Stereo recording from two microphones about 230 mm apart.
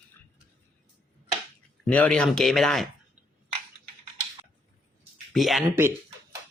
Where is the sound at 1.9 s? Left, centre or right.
Centre.